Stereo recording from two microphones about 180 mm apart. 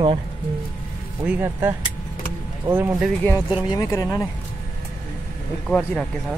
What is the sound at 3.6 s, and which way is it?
Speech, 20° left (ahead or behind).